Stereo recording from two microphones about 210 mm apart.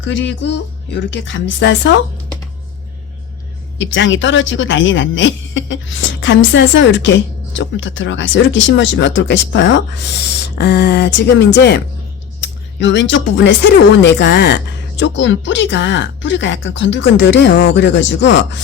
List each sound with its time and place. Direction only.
0.0 s speech: 60° left (ahead or behind)
3.8 s speech: 60° left (ahead or behind)